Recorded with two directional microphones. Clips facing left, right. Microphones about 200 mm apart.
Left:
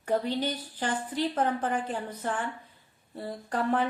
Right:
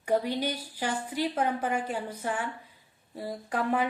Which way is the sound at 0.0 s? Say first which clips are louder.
Right 1 dB; 10° right (ahead or behind).